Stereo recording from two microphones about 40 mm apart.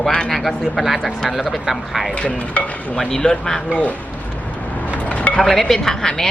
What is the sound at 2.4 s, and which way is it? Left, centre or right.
Speech, left.